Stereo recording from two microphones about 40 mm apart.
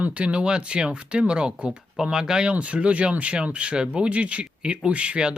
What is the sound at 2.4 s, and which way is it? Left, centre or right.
Speech, right.